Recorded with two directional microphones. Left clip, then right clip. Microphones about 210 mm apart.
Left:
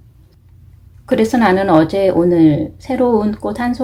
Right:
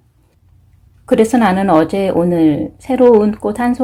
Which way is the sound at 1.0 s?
45° right (ahead or behind).